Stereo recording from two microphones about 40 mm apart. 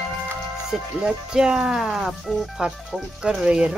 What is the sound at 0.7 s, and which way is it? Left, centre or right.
Speech, centre.